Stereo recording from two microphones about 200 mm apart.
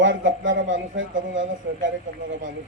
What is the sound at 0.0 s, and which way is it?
A man's voice, 70° right (ahead or behind).